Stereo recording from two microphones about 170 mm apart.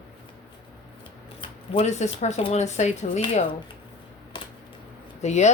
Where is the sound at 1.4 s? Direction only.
35° left (ahead or behind).